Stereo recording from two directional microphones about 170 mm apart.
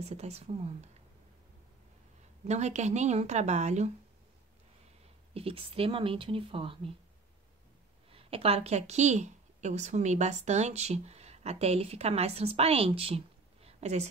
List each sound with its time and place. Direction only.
0.0 s speech: 40° right (ahead or behind)
2.4 s speech: 40° right (ahead or behind)
5.3 s speech: 35° right (ahead or behind)
8.1 s a woman's voice: 35° right (ahead or behind)